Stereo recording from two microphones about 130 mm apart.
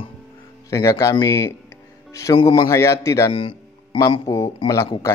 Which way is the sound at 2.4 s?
35° left (ahead or behind).